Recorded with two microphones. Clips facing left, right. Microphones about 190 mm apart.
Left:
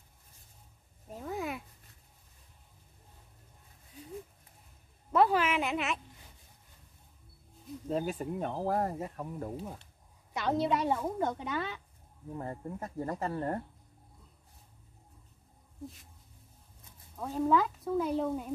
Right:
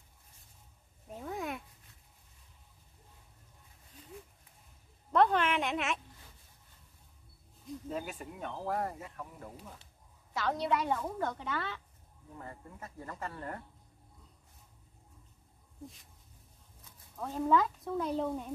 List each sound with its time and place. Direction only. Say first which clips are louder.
1.1 s a sound: left 2 dB; centre (ahead or behind)
5.1 s a sound: left 1 dB; 5° left (ahead or behind)
7.9 s speech: left 8 dB; 35° left (ahead or behind)
10.3 s a woman's voice: left 2 dB; 20° left (ahead or behind)
12.4 s speech: left 8 dB; 40° left (ahead or behind)
17.2 s speech: left 1 dB; 5° left (ahead or behind)